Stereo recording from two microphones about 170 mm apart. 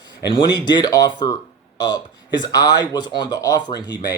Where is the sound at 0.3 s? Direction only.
25° left (ahead or behind).